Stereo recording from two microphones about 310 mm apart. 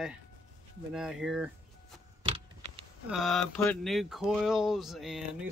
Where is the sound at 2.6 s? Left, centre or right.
Right.